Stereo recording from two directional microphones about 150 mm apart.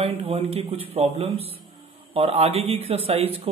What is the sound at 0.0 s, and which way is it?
A man's voice, 40° right (ahead or behind).